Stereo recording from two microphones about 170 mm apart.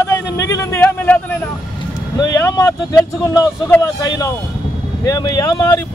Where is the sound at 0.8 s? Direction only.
10° left (ahead or behind).